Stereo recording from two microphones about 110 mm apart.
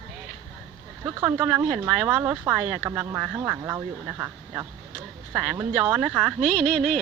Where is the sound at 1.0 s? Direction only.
15° right (ahead or behind).